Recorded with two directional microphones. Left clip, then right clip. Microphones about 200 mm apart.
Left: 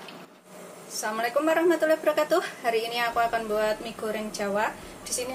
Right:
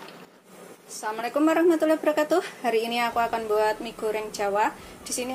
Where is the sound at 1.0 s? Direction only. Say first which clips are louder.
Even; 30° right (ahead or behind).